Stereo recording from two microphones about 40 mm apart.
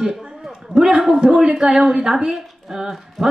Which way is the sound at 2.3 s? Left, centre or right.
Centre.